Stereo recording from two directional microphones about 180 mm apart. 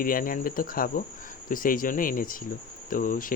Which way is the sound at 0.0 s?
50° left (ahead or behind).